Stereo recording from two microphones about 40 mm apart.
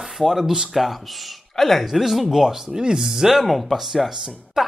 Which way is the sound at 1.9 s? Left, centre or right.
Centre.